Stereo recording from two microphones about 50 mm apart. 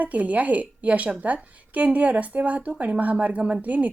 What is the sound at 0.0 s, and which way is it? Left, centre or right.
A woman's voice, right.